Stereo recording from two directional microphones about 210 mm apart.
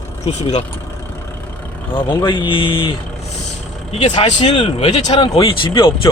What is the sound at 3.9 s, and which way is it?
A man's voice, 30° left (ahead or behind).